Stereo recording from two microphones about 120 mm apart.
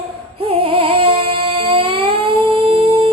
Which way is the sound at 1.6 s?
50° right (ahead or behind).